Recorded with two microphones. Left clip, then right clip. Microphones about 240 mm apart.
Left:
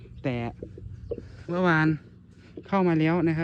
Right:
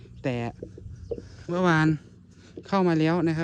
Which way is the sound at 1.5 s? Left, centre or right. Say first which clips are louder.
Even; centre.